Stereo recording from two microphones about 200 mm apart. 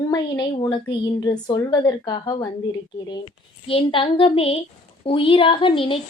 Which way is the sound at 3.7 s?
30° left (ahead or behind).